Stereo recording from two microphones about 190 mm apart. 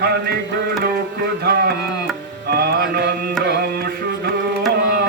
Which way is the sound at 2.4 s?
55° right (ahead or behind).